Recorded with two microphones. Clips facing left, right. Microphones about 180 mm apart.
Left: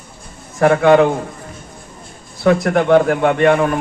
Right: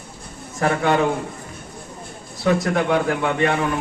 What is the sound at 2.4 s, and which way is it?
A man's voice, 55° left (ahead or behind).